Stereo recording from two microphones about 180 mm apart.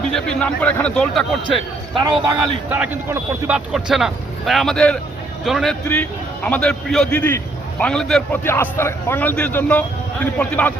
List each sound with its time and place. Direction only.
0.1 s speech: 5° left (ahead or behind)
2.0 s a man's voice: 25° right (ahead or behind)
2.6 s a man's voice: 10° right (ahead or behind); by 10.8 s 10° left (ahead or behind)